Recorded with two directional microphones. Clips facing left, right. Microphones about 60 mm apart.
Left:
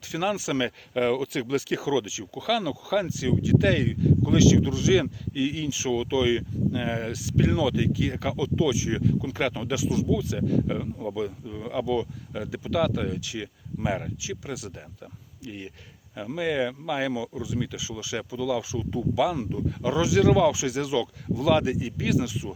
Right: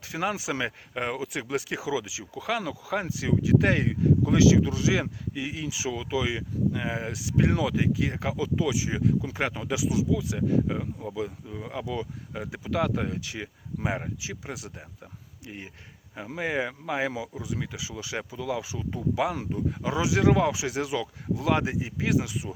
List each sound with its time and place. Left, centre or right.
0.1 s speech: right